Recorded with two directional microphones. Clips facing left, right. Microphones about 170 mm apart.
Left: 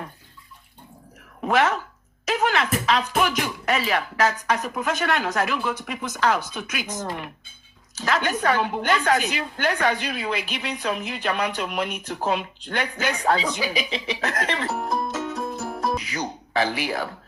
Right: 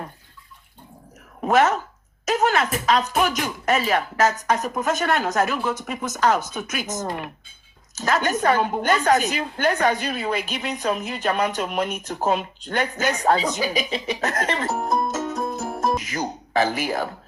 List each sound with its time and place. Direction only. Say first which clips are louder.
1.4 s speech: right 3 dB; 45° right (ahead or behind)